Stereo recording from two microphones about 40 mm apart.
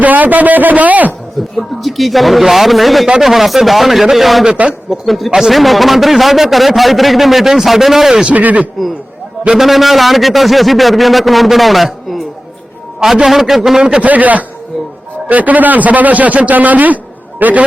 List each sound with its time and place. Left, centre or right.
0.0 s a man's voice: right
1.5 s a man's voice: centre
8.3 s a man's voice: right
9.6 s a man's voice: centre
14.0 s a man's voice: right